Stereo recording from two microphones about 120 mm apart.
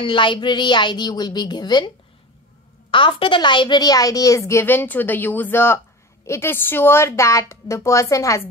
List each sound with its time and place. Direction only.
0.0 s a woman's voice: 40° left (ahead or behind)
2.9 s a woman's voice: 45° left (ahead or behind); by 8.5 s 25° left (ahead or behind)